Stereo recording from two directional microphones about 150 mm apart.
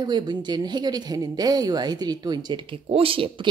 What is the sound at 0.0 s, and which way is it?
Speech, 30° right (ahead or behind).